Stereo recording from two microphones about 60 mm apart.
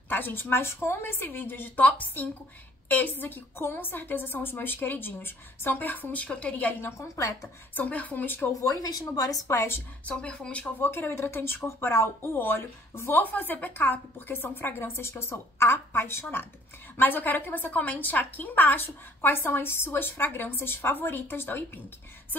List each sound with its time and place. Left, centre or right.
0.1 s a woman's voice: left
6.8 s speech: left
7.7 s a woman's voice: left
8.6 s speech: left
9.5 s speech: left
10.0 s a woman's voice: centre
10.8 s speech: left
13.2 s a woman's voice: left